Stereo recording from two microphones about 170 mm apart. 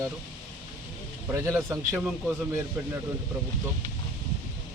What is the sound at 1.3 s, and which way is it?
Speech, 15° right (ahead or behind).